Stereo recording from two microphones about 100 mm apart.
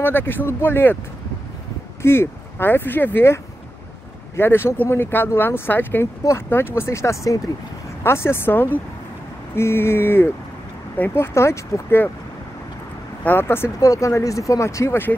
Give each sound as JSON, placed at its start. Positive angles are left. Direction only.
{"t": 0.0, "sound": "speech", "side_deg": 20}
{"t": 2.0, "sound": "speech", "side_deg": 25}
{"t": 4.4, "sound": "speech", "side_deg": 25}
{"t": 13.2, "sound": "speech", "side_deg": 20}